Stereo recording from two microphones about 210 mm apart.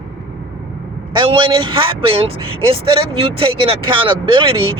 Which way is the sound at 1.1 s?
25° right (ahead or behind).